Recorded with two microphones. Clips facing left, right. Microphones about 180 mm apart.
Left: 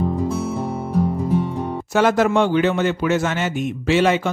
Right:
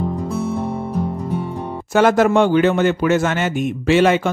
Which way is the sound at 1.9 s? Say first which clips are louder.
Right 3 dB; 50° right (ahead or behind).